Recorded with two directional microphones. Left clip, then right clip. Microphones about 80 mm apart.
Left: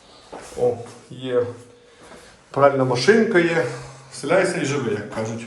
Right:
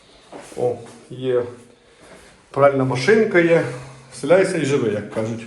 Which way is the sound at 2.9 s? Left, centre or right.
Left.